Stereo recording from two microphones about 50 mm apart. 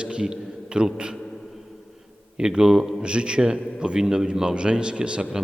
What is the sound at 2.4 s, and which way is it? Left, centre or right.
A man's voice, centre.